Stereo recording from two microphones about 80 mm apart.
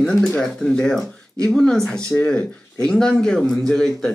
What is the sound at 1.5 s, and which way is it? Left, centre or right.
Speech, centre.